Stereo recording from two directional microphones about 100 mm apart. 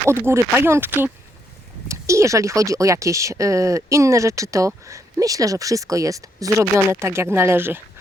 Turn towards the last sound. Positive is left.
turn(degrees=-20)  # may be behind; listen again after turning